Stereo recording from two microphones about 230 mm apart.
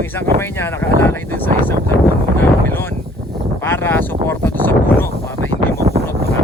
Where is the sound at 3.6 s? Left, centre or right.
Centre.